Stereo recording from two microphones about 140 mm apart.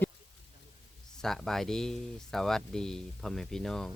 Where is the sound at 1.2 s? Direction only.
5° left (ahead or behind).